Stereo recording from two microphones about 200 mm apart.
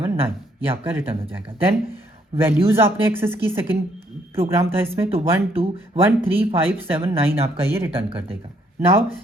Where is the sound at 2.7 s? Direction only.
10° right (ahead or behind).